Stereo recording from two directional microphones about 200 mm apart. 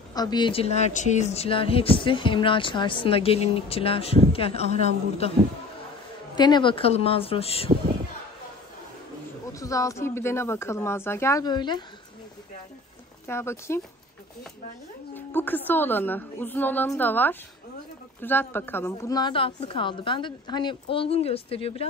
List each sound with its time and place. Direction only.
0.1 s a woman's voice: 20° left (ahead or behind)
6.3 s speech: 20° left (ahead or behind)
9.5 s speech: 15° left (ahead or behind)
13.3 s speech: 15° left (ahead or behind)
15.1 s speech: 10° left (ahead or behind); by 21.8 s 30° left (ahead or behind)